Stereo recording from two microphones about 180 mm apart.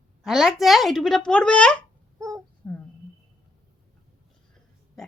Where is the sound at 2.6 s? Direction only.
10° left (ahead or behind).